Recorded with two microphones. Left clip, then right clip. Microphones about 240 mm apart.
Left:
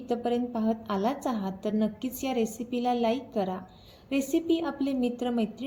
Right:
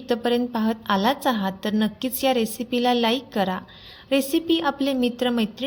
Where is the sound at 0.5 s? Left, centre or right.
Right.